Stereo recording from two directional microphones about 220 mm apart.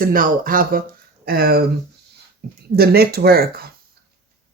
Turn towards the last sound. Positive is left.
turn(degrees=-45)  # may be behind; listen again after turning